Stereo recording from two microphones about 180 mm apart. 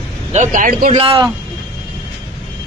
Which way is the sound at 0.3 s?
45° right (ahead or behind).